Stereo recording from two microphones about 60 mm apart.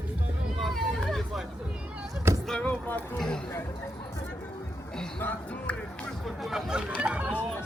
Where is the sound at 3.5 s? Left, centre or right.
Left.